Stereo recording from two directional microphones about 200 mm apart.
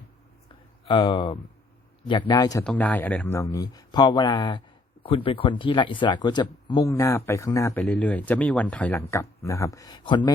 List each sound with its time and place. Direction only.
0.9 s speech: 25° left (ahead or behind)
2.6 s speech: 5° left (ahead or behind); by 10.3 s 25° left (ahead or behind)